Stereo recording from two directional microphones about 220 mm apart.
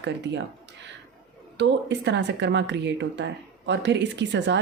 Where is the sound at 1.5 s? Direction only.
50° right (ahead or behind).